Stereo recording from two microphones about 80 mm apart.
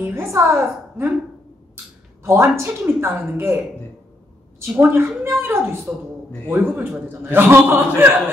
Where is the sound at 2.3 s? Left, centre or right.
Right.